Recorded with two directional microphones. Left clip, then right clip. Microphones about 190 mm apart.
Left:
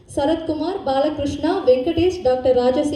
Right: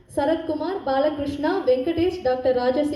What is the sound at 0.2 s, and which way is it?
A woman's voice, 55° left (ahead or behind).